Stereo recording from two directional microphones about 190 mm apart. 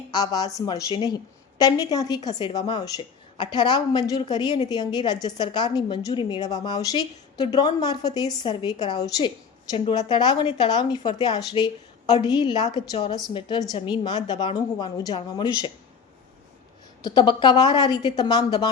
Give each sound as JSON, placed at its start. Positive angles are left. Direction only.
{"t": 0.1, "sound": "a woman's voice", "side_deg": 20}
{"t": 17.0, "sound": "a woman's voice", "side_deg": 25}